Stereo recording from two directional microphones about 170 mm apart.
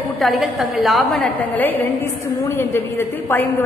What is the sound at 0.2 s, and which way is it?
A woman's voice, centre (ahead or behind).